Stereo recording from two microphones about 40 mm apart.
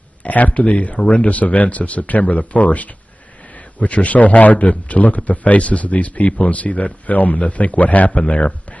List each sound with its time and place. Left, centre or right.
0.2 s a man's voice: left
8.2 s a man's voice: left